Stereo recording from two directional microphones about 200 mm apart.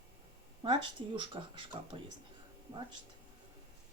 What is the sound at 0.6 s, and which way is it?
Speech, 25° right (ahead or behind).